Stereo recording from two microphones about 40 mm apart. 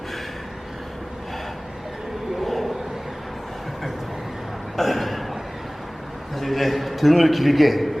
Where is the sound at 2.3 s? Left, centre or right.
Centre.